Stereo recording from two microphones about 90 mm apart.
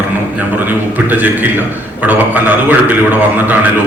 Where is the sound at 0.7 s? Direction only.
20° right (ahead or behind).